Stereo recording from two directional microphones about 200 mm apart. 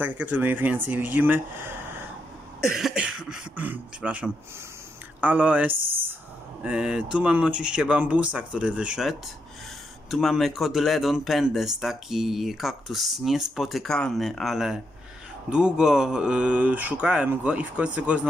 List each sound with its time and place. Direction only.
0.0 s speech: 10° right (ahead or behind)
2.6 s speech: centre (ahead or behind)
5.9 s a sound: 10° right (ahead or behind)
6.6 s speech: 5° right (ahead or behind)
10.1 s speech: centre (ahead or behind)